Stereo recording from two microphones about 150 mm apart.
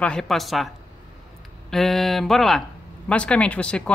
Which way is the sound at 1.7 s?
Centre (ahead or behind).